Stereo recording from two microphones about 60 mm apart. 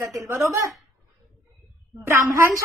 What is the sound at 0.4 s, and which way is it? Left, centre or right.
Speech, right.